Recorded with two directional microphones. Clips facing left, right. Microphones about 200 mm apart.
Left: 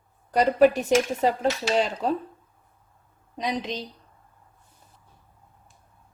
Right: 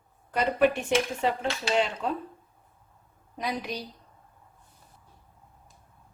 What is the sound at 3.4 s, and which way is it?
Speech, 20° left (ahead or behind).